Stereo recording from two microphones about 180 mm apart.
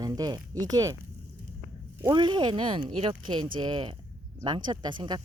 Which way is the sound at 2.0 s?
25° right (ahead or behind).